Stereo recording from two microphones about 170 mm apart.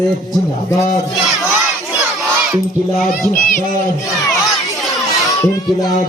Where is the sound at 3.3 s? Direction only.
50° left (ahead or behind).